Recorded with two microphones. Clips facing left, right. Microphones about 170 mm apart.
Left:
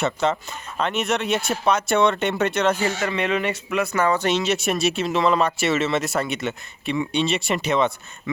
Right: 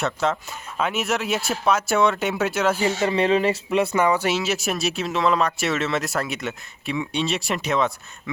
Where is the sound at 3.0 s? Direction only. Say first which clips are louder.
Right 4 dB; 30° right (ahead or behind).